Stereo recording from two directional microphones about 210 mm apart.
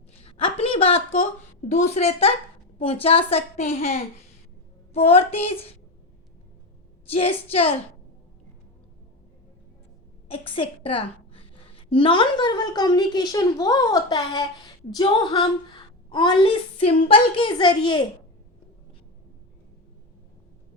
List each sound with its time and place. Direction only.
0.2 s a sound: 25° left (ahead or behind)
1.7 s a woman's voice: 30° left (ahead or behind)
4.9 s a woman's voice: 30° left (ahead or behind)
7.1 s a woman's voice: 25° left (ahead or behind)
10.2 s a woman's voice: 25° left (ahead or behind)